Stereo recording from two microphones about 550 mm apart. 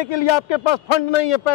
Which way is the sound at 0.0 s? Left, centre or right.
Left.